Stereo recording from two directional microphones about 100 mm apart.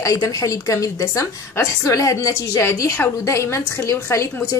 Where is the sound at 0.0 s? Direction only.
35° left (ahead or behind).